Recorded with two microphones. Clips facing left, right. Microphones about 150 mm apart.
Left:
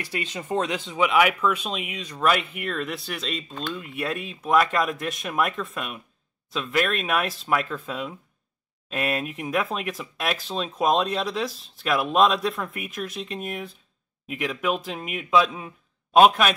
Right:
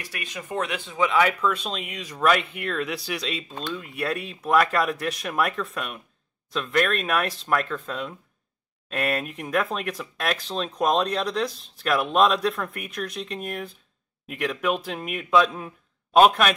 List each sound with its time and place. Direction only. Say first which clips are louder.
0.1 s speech: left 4 dB; 25° left (ahead or behind); by 16.5 s centre (ahead or behind)